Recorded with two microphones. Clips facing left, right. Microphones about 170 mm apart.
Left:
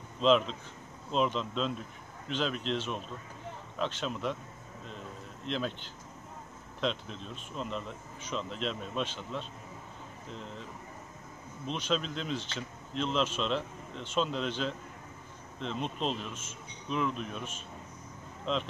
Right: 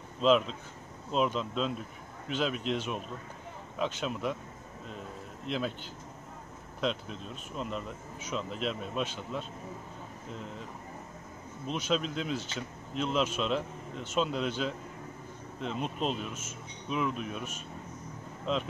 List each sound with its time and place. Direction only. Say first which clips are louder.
0.2 s speech: even; 5° right (ahead or behind)
5.5 s speech: right 1 dB; 10° right (ahead or behind)
6.8 s speech: right 1 dB; 5° right (ahead or behind)
11.6 s speech: right 1 dB; 10° right (ahead or behind)